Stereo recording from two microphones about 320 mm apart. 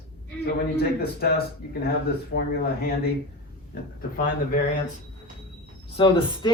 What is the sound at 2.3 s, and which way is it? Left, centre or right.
Speech, left.